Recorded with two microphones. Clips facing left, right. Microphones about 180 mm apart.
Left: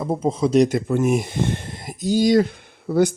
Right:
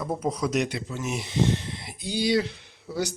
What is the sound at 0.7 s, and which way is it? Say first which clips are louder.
Speech: left 12 dB; 50° left (ahead or behind).